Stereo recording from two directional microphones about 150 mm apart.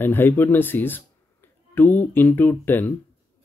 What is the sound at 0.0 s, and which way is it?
Speech, 15° left (ahead or behind).